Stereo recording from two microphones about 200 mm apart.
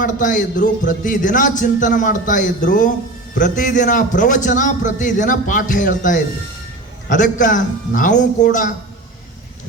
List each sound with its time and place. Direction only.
0.0 s a man's voice: 40° left (ahead or behind)